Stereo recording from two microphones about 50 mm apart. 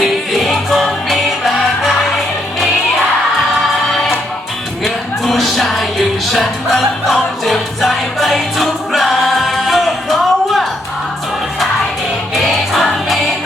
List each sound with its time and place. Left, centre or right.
0.0 s music: centre
4.8 s music: centre
12.3 s music: centre